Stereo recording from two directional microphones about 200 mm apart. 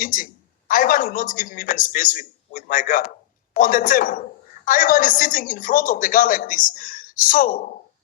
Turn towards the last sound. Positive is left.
turn(degrees=40)  # may be behind; listen again after turning